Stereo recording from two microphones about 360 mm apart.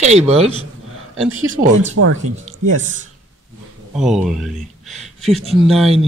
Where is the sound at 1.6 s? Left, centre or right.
Right.